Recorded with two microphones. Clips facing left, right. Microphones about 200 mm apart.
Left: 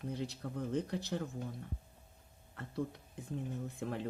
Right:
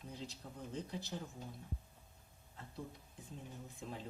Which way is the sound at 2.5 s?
70° left (ahead or behind).